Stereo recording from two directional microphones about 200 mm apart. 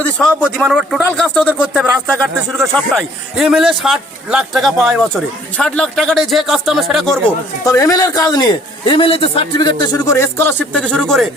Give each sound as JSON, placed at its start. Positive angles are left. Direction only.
{"t": 0.0, "sound": "speech", "side_deg": 5}
{"t": 3.3, "sound": "speech", "side_deg": 0}
{"t": 7.6, "sound": "a man's voice", "side_deg": 15}